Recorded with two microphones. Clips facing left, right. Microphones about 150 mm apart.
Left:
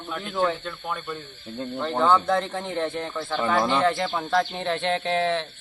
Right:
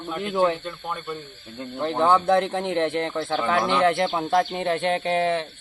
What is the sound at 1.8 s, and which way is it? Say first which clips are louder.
Speech: right 1 dB; 15° right (ahead or behind).